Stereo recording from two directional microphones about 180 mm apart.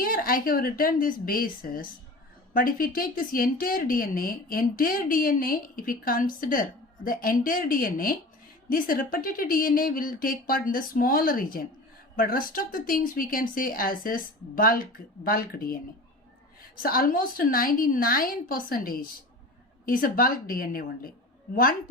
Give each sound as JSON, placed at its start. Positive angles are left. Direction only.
{"t": 0.0, "sound": "speech", "side_deg": 55}